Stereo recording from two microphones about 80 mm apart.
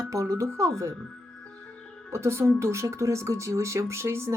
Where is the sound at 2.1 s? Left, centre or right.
Right.